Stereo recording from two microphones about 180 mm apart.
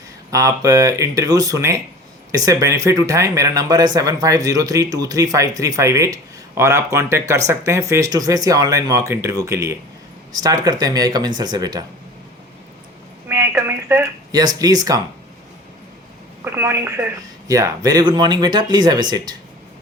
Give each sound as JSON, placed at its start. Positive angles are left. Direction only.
{"t": 0.3, "sound": "speech", "side_deg": -20}
{"t": 13.2, "sound": "a sound", "side_deg": -15}
{"t": 16.4, "sound": "a woman's voice", "side_deg": -15}